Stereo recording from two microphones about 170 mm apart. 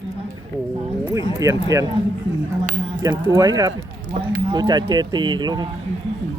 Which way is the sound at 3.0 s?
25° right (ahead or behind).